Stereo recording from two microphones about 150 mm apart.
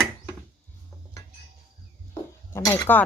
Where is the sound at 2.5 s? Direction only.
20° left (ahead or behind).